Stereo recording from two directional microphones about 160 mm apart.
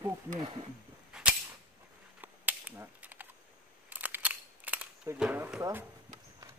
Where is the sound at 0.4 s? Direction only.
25° right (ahead or behind).